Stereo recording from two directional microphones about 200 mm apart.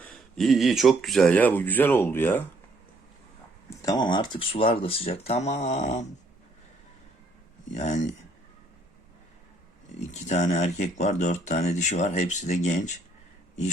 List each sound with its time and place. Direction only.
0.0 s speech: centre (ahead or behind)
3.7 s speech: 15° left (ahead or behind); by 6.1 s 35° left (ahead or behind)
7.7 s speech: 35° left (ahead or behind)
10.0 s speech: 35° left (ahead or behind)